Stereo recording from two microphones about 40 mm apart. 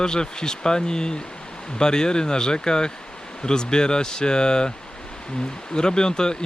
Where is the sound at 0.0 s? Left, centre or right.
Centre.